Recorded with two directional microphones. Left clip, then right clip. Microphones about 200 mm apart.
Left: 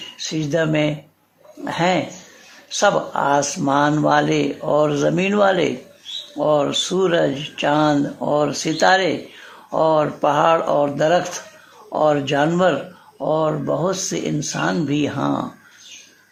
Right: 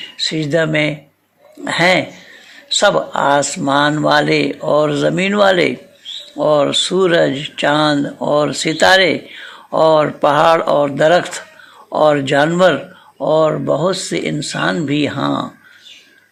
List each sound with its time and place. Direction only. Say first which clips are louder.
0.2 s speech: right 5 dB; centre (ahead or behind)
3.4 s speech: right 3 dB; centre (ahead or behind)
8.8 s speech: right 5 dB; 15° right (ahead or behind)